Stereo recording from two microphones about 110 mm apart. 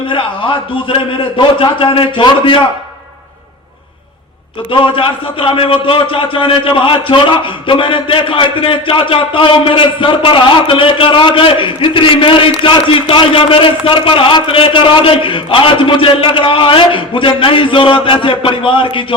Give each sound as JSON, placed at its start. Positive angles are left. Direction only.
{"t": 0.1, "sound": "a man's voice", "side_deg": 50}
{"t": 4.7, "sound": "a man's voice", "side_deg": 50}